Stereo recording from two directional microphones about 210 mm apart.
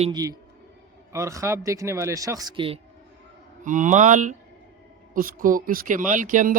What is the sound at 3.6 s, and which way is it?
Speech, 35° right (ahead or behind).